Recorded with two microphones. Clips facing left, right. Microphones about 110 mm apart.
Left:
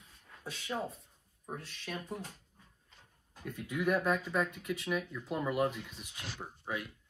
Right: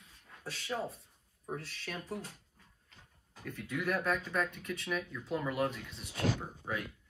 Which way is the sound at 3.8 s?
15° left (ahead or behind).